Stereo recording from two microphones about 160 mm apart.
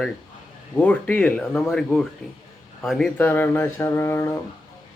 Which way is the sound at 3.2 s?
15° left (ahead or behind).